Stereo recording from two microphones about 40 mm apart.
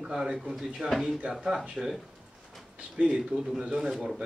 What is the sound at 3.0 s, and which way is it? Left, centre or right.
Speech, right.